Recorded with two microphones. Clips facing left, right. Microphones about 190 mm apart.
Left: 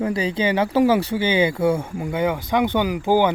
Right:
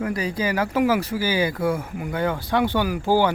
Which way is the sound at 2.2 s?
20° left (ahead or behind).